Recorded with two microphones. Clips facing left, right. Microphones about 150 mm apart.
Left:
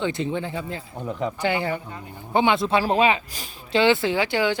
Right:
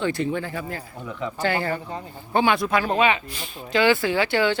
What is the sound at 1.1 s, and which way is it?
Speech, 40° left (ahead or behind).